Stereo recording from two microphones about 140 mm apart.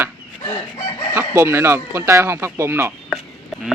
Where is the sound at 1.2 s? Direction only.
20° right (ahead or behind).